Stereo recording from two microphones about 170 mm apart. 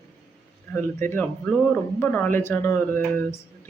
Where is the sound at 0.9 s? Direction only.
15° left (ahead or behind).